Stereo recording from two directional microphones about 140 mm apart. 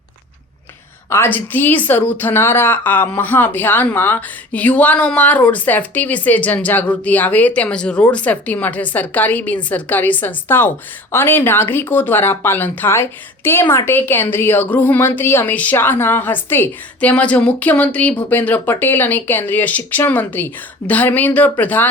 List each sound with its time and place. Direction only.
1.1 s speech: 15° left (ahead or behind)